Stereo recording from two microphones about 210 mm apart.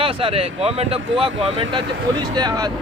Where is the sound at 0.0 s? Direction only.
25° right (ahead or behind).